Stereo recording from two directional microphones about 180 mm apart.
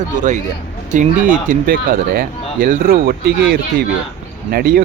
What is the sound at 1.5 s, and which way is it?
Speech, 55° right (ahead or behind).